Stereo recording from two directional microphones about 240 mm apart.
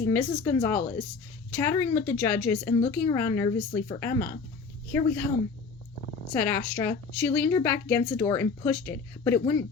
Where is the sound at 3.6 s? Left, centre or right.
Left.